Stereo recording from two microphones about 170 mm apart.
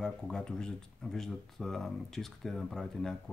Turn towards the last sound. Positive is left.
turn(degrees=5)  # may be behind; listen again after turning